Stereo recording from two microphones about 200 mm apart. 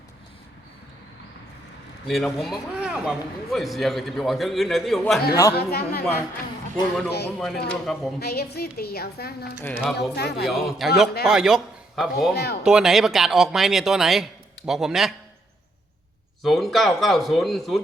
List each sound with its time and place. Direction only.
2.0 s a man's voice: centre (ahead or behind)
5.3 s speech: 15° left (ahead or behind)
5.5 s a woman's voice: 50° left (ahead or behind)
7.3 s a man's voice: centre (ahead or behind)
8.2 s a woman's voice: 50° left (ahead or behind)
9.6 s speech: 10° left (ahead or behind)
9.8 s a man's voice: centre (ahead or behind)
10.2 s speech: 55° left (ahead or behind)
10.4 s a man's voice: centre (ahead or behind)
12.3 s a woman's voice: 55° left (ahead or behind)
12.6 s a man's voice: centre (ahead or behind)
16.4 s a man's voice: centre (ahead or behind)